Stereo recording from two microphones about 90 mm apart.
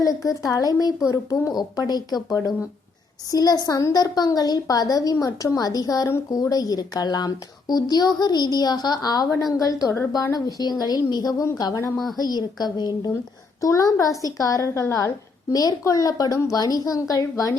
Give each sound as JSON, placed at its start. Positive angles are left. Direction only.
{"t": 0.3, "sound": "a woman's voice", "side_deg": 40}
{"t": 1.9, "sound": "a child's voice", "side_deg": 50}
{"t": 11.9, "sound": "a woman's voice", "side_deg": 0}
{"t": 12.2, "sound": "a child's voice", "side_deg": 50}